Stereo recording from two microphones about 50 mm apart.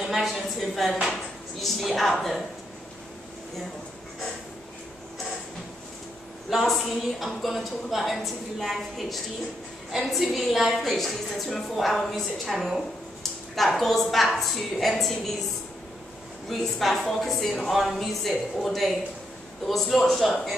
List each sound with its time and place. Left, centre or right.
0.0 s a woman's voice: centre
6.5 s a woman's voice: centre
16.4 s a woman's voice: centre